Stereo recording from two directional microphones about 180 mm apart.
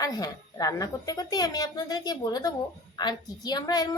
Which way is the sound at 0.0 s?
20° left (ahead or behind).